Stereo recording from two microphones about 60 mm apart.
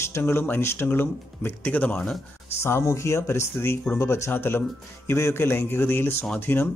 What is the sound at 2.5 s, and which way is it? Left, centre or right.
Speech, left.